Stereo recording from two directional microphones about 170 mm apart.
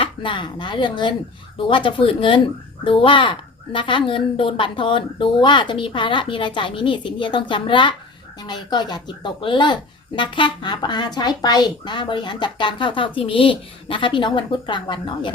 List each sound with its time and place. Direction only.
0.0 s speech: 30° left (ahead or behind)